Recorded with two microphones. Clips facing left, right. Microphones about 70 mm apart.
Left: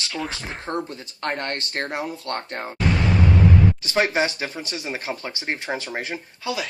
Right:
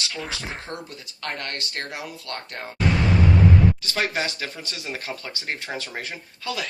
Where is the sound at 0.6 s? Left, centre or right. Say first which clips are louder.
Left 7 dB; left.